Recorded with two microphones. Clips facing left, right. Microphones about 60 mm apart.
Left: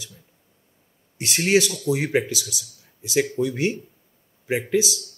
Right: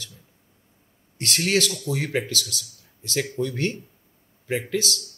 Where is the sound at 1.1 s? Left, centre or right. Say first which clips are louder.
Left 4 dB; centre.